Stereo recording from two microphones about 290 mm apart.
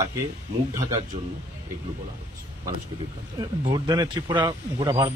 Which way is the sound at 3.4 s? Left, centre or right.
Centre.